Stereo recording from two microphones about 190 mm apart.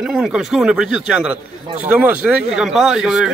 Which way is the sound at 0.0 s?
5° right (ahead or behind).